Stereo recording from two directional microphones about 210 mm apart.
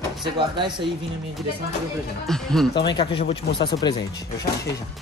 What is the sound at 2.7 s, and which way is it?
Speech, 25° left (ahead or behind).